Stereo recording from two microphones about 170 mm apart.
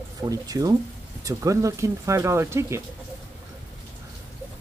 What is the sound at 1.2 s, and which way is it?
Speech, 20° right (ahead or behind).